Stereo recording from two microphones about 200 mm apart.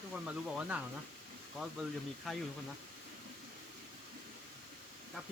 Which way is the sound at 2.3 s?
Centre (ahead or behind).